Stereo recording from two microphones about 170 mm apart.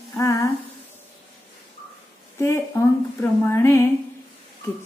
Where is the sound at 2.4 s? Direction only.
15° left (ahead or behind).